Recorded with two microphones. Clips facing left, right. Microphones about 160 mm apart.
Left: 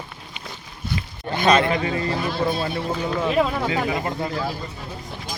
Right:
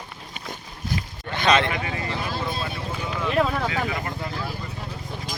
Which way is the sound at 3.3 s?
10° left (ahead or behind).